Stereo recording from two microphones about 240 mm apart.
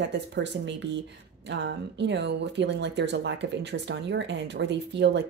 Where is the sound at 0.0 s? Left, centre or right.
Right.